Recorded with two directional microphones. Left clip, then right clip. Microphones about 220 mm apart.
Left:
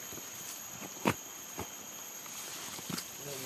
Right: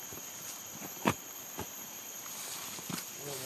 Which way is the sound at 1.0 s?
5° right (ahead or behind).